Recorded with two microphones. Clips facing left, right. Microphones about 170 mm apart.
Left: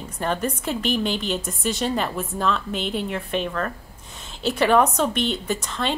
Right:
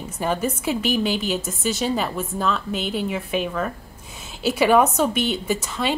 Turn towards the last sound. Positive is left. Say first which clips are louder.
# right 2 dB
turn(degrees=-5)  # may be behind; listen again after turning